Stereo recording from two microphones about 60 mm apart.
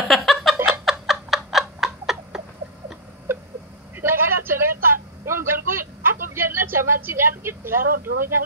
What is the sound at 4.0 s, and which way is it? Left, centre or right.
A man's voice, right.